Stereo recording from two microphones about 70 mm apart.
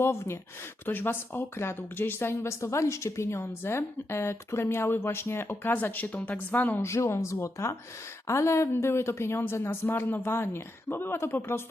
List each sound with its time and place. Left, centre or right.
0.0 s a woman's voice: left
6.8 s speech: left